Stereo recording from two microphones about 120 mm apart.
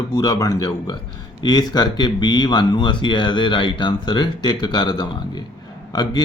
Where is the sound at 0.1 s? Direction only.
35° left (ahead or behind).